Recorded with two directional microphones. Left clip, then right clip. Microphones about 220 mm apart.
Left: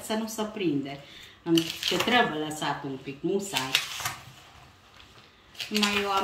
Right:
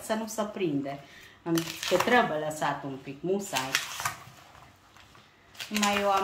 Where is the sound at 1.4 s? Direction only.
20° right (ahead or behind).